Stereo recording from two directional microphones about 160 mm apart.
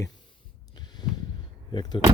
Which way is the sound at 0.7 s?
25° left (ahead or behind).